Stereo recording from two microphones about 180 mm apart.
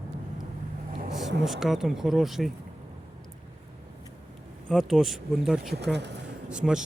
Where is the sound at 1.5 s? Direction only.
Centre (ahead or behind).